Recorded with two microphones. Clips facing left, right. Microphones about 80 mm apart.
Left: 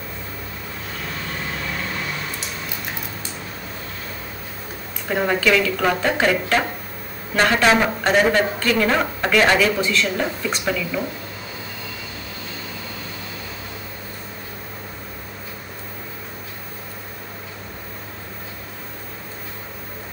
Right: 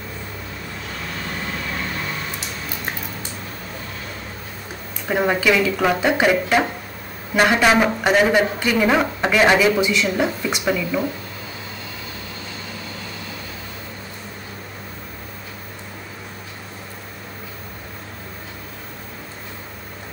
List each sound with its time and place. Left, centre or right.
5.0 s speech: centre